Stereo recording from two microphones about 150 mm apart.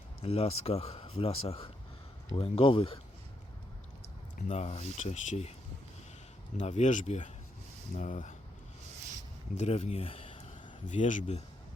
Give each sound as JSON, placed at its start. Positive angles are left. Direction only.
{"t": 0.2, "sound": "speech", "side_deg": 40}
{"t": 4.4, "sound": "speech", "side_deg": 50}
{"t": 6.6, "sound": "speech", "side_deg": 50}
{"t": 9.6, "sound": "speech", "side_deg": 45}